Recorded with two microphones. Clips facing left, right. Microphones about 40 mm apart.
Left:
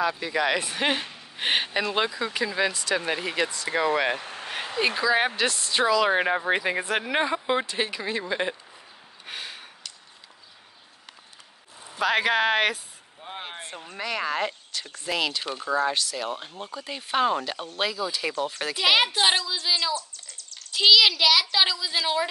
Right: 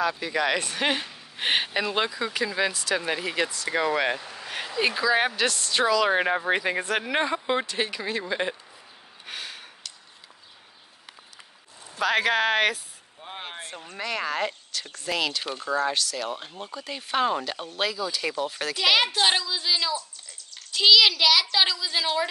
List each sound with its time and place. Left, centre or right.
0.0 s speech: centre
4.2 s vehicle: left
4.7 s speech: centre
9.2 s gasp: centre
11.9 s speech: centre